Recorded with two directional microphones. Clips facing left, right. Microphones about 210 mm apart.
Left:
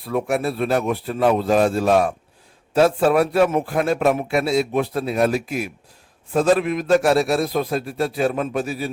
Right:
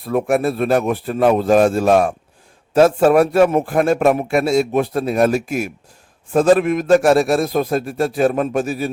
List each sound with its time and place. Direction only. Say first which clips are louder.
0.0 s a man's voice: right 4 dB; 50° right (ahead or behind)